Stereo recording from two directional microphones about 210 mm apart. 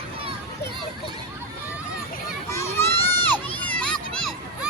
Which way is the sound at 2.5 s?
10° left (ahead or behind).